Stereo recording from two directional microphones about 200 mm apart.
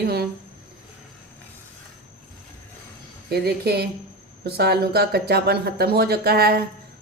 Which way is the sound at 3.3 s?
50° right (ahead or behind).